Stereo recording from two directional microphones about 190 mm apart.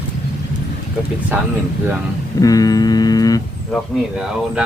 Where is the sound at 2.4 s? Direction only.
20° left (ahead or behind).